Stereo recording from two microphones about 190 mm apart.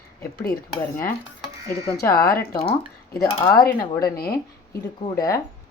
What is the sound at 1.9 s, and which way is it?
Speech, 20° left (ahead or behind).